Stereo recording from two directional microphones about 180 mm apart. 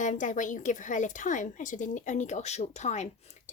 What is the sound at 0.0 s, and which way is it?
A woman's voice, 45° left (ahead or behind).